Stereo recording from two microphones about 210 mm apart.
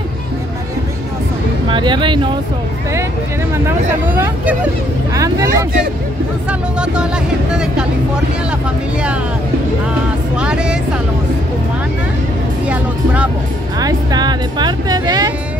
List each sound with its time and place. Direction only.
1.7 s speech: 20° right (ahead or behind)
3.5 s speech: 10° right (ahead or behind)
10.4 s speech: 5° right (ahead or behind)
12.6 s vehicle: 5° right (ahead or behind)
13.7 s speech: 20° right (ahead or behind)